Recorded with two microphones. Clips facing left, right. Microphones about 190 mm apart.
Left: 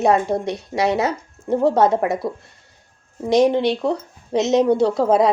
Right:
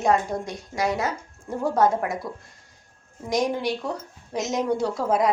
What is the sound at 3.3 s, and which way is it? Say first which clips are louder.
Speech: left 8 dB; 65° left (ahead or behind).